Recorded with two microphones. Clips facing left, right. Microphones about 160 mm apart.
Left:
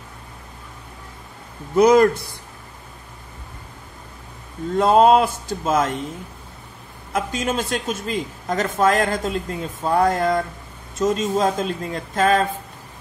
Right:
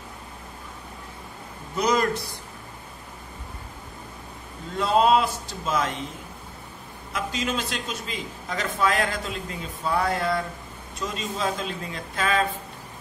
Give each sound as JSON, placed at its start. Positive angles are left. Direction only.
{"t": 1.8, "sound": "a man's voice", "side_deg": 55}
{"t": 4.7, "sound": "a man's voice", "side_deg": 50}
{"t": 7.1, "sound": "a man's voice", "side_deg": 50}